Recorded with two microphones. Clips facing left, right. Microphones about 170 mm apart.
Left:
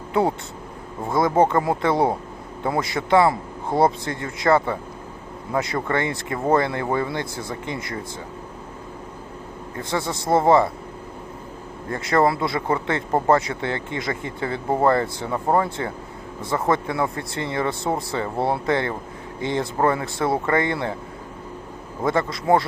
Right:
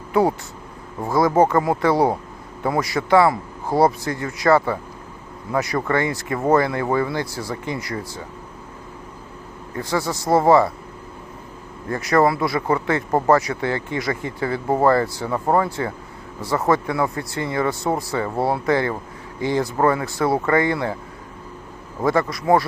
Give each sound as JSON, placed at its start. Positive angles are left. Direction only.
{"t": 0.1, "sound": "speech", "side_deg": 25}
{"t": 9.7, "sound": "speech", "side_deg": 25}
{"t": 11.9, "sound": "speech", "side_deg": 25}
{"t": 22.0, "sound": "speech", "side_deg": 25}